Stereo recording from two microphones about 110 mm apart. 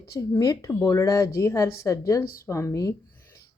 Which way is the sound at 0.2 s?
30° left (ahead or behind).